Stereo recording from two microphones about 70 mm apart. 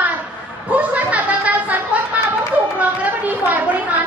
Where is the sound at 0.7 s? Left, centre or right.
Right.